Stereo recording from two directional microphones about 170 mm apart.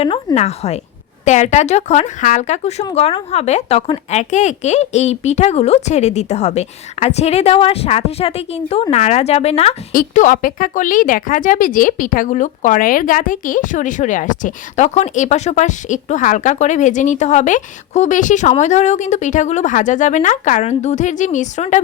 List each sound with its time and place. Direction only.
0.3 s speech: 40° left (ahead or behind)
9.9 s speech: 50° left (ahead or behind)